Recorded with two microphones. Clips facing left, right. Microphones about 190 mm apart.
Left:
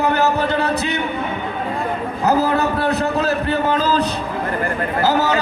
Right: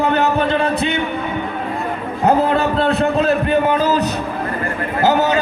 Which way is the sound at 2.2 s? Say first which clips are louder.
Right 2 dB; 25° right (ahead or behind).